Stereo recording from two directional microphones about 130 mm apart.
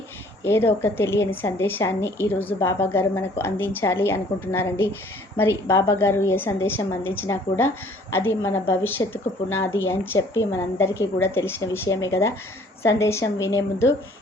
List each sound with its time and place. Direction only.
0.4 s a woman's voice: 20° left (ahead or behind)